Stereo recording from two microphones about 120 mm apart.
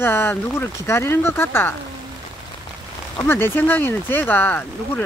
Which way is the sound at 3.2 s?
20° left (ahead or behind).